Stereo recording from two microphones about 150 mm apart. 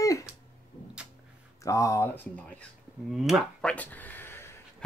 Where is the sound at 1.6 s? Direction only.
20° left (ahead or behind).